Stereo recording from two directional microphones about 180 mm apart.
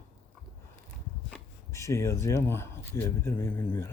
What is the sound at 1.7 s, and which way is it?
Speech, 15° left (ahead or behind).